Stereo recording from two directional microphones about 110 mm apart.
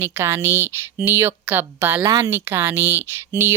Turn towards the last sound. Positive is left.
turn(degrees=-20)  # may be behind; listen again after turning